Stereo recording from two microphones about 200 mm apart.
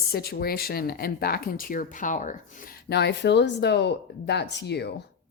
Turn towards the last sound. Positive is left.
turn(degrees=55)  # may be behind; listen again after turning